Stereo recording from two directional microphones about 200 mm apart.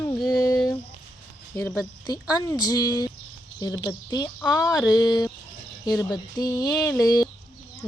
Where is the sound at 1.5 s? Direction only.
5° left (ahead or behind).